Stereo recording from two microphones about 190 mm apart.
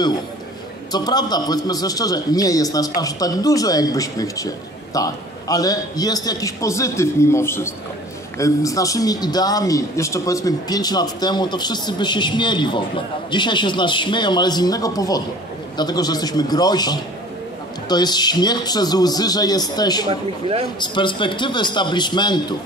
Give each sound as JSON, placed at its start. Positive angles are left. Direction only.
{"t": 0.9, "sound": "a man's voice", "side_deg": 20}
{"t": 20.1, "sound": "speech", "side_deg": -30}
{"t": 20.8, "sound": "a man's voice", "side_deg": 25}